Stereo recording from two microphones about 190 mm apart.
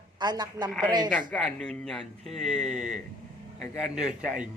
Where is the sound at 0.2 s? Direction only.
20° right (ahead or behind).